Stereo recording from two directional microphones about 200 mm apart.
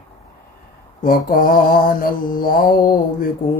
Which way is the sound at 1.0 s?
45° left (ahead or behind).